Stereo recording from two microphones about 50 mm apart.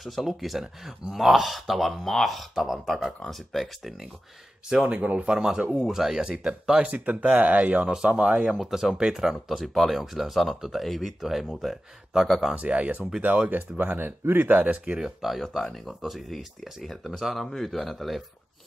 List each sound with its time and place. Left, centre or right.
0.0 s speech: centre
4.8 s speech: right
5.3 s speech: centre
6.9 s speech: right
8.5 s speech: centre
12.5 s speech: right
15.0 s speech: centre